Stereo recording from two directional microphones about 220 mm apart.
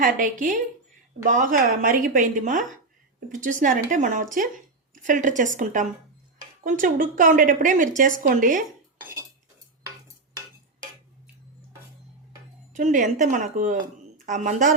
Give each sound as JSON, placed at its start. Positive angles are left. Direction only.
{"t": 0.0, "sound": "a woman's voice", "side_deg": -35}
{"t": 12.7, "sound": "a woman's voice", "side_deg": -35}